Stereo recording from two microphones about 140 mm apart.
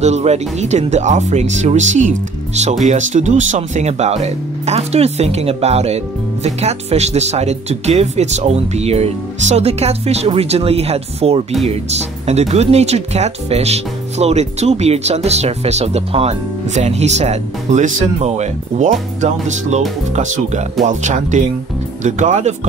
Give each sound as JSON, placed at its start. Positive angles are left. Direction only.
{"t": 0.0, "sound": "speech", "side_deg": -50}